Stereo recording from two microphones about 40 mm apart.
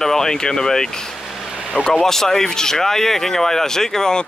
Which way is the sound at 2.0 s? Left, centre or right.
Centre.